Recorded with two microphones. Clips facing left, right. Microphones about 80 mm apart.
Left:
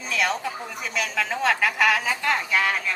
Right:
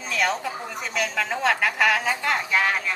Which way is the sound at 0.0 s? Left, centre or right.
Centre.